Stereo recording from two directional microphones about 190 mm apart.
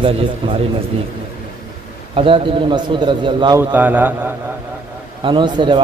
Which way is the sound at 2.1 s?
30° right (ahead or behind).